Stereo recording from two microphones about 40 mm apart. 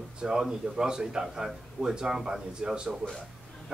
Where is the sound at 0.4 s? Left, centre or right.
Centre.